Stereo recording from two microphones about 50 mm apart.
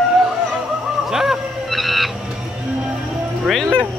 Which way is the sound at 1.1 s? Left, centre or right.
Centre.